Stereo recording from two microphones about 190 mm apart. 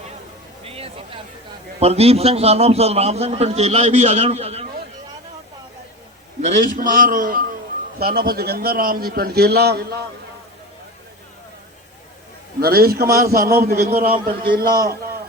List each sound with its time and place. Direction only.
0.6 s a sound: 30° right (ahead or behind)
1.8 s a man's voice: 30° right (ahead or behind)
6.4 s a man's voice: 45° right (ahead or behind)
12.5 s a man's voice: 50° right (ahead or behind)